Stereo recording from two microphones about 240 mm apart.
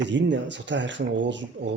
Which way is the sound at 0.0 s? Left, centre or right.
Right.